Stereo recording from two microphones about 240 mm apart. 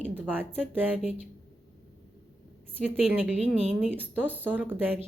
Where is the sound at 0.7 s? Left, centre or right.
Centre.